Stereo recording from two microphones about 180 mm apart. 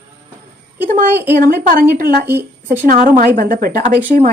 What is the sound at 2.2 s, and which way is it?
Speech, 10° right (ahead or behind).